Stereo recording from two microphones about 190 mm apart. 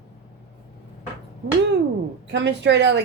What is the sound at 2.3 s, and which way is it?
Speech, 70° right (ahead or behind).